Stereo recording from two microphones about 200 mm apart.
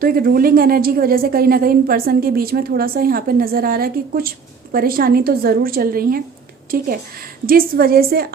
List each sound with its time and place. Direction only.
0.0 s a woman's voice: 45° right (ahead or behind)